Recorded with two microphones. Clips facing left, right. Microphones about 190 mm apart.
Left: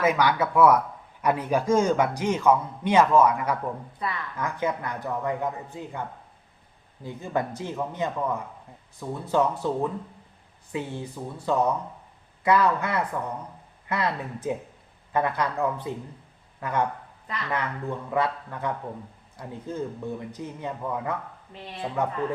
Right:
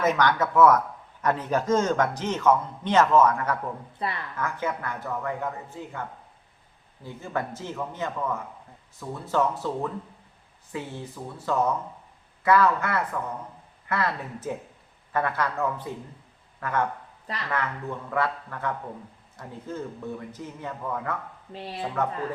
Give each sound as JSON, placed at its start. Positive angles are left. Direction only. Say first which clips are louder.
{"t": 0.0, "sound": "speech", "louder": "even", "side_deg": 10}
{"t": 4.0, "sound": "speech", "louder": "right 1 dB", "side_deg": -30}
{"t": 4.4, "sound": "speech", "louder": "left 2 dB", "side_deg": 15}
{"t": 21.5, "sound": "speech", "louder": "right 5 dB", "side_deg": -30}